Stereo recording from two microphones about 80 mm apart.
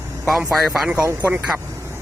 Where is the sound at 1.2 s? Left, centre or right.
Right.